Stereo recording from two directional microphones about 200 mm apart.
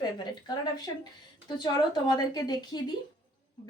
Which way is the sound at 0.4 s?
20° left (ahead or behind).